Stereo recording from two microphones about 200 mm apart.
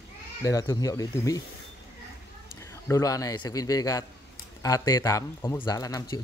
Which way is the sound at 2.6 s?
15° left (ahead or behind).